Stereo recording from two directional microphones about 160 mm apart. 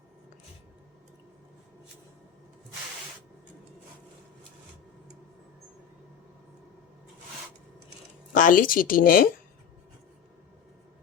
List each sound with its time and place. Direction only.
8.3 s speech: 55° left (ahead or behind)